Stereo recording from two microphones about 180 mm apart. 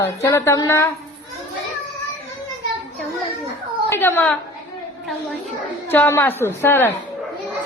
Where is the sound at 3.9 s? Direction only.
10° left (ahead or behind).